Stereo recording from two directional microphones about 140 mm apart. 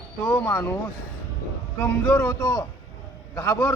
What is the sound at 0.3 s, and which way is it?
Speech, 15° left (ahead or behind).